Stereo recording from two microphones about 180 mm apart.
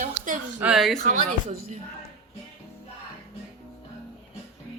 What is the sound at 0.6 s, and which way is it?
Speech, centre (ahead or behind).